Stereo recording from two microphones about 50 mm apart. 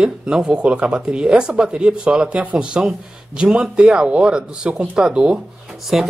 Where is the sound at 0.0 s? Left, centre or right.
Centre.